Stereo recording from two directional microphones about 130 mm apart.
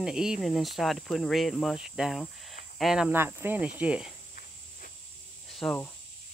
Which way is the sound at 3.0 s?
15° right (ahead or behind).